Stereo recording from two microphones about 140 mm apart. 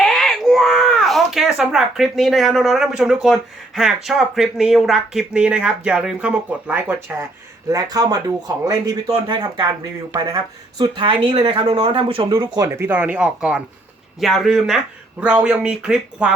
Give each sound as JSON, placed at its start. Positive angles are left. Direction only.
{"t": 0.0, "sound": "a sound", "side_deg": 0}
{"t": 3.8, "sound": "speech", "side_deg": 0}
{"t": 7.7, "sound": "speech", "side_deg": -25}
{"t": 12.5, "sound": "speech", "side_deg": -20}